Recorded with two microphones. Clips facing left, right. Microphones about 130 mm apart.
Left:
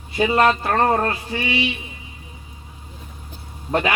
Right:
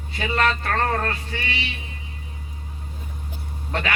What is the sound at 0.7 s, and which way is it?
Music, 30° left (ahead or behind).